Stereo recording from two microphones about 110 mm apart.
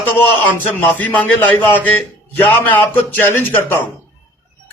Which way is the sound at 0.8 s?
15° left (ahead or behind).